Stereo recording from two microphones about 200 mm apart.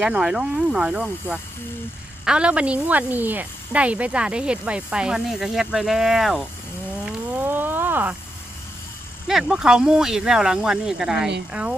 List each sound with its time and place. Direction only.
0.0 s speech: 5° right (ahead or behind)
7.0 s a sound: 10° right (ahead or behind)
9.2 s speech: centre (ahead or behind)